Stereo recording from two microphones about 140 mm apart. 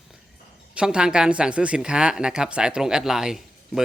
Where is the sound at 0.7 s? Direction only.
5° right (ahead or behind).